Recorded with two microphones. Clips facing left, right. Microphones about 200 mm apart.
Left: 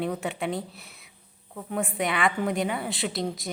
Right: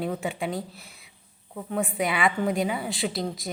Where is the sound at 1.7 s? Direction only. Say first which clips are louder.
Right 1 dB; centre (ahead or behind).